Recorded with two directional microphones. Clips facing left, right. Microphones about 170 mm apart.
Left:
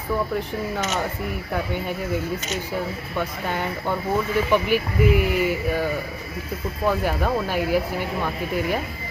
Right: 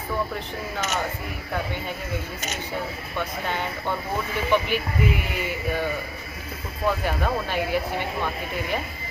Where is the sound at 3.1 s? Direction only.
5° left (ahead or behind).